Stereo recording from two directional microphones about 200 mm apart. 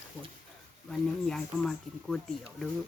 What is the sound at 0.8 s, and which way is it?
Speech, 5° left (ahead or behind).